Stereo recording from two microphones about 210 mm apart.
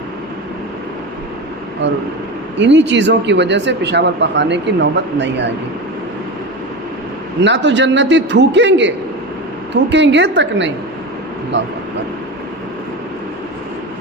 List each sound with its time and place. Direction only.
1.8 s speech: 55° right (ahead or behind)
7.4 s speech: 55° right (ahead or behind)
9.9 s speech: 55° right (ahead or behind)